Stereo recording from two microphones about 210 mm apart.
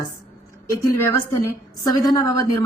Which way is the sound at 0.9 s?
10° left (ahead or behind).